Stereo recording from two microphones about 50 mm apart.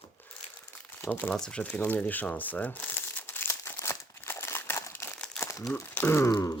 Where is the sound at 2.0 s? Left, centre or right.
Left.